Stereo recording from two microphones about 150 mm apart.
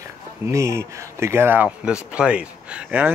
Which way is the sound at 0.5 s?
20° right (ahead or behind).